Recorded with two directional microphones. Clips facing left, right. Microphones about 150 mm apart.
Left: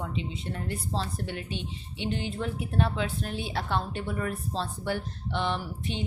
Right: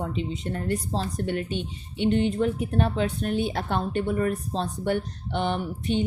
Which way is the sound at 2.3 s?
50° right (ahead or behind).